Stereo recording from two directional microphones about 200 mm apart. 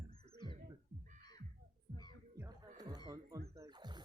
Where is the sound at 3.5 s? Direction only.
20° right (ahead or behind).